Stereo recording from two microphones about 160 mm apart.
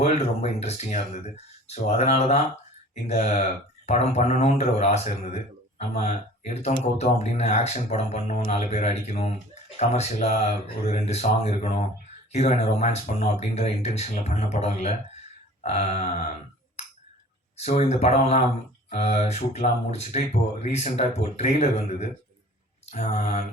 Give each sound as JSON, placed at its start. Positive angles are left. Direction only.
{"t": 0.0, "sound": "speech", "side_deg": 40}
{"t": 17.6, "sound": "speech", "side_deg": 40}